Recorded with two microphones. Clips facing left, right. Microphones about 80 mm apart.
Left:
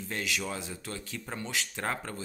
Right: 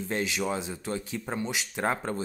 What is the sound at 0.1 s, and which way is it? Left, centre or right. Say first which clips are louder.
Speech: right 5 dB; right.